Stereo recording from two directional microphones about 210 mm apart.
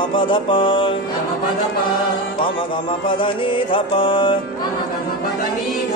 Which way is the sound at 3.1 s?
25° left (ahead or behind).